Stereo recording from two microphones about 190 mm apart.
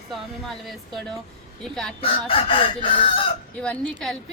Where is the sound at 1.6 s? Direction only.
5° left (ahead or behind).